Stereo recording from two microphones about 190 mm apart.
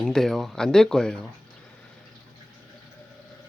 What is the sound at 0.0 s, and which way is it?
Speech, centre (ahead or behind).